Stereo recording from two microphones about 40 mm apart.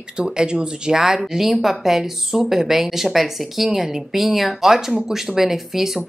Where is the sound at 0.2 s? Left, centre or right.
Right.